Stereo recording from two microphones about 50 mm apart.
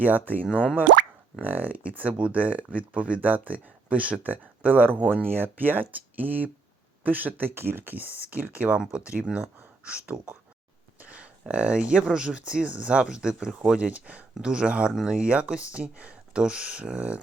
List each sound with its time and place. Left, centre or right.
0.0 s speech: right
4.9 s speech: right
5.2 s speech: right
7.5 s speech: right; by 17.2 s centre